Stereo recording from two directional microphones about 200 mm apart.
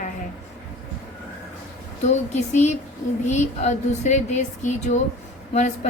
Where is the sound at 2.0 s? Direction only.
35° left (ahead or behind).